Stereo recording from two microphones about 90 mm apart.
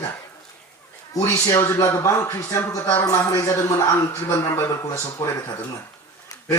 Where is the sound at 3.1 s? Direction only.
30° left (ahead or behind).